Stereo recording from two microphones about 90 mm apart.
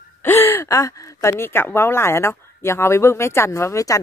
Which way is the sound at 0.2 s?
25° left (ahead or behind).